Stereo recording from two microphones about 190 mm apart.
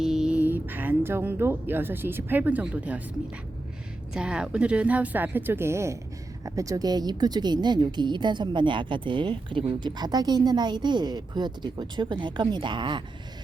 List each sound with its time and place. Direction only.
0.0 s speech: 5° right (ahead or behind)
4.1 s a woman's voice: 5° right (ahead or behind); by 13.0 s 25° right (ahead or behind)